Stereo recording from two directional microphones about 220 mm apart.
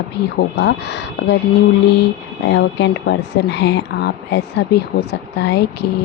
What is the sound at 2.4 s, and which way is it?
Speech, 55° left (ahead or behind).